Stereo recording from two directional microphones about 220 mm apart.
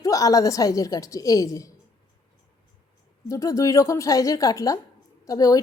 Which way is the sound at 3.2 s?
15° left (ahead or behind).